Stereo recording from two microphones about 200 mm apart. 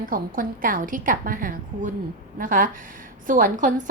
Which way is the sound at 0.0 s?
45° right (ahead or behind).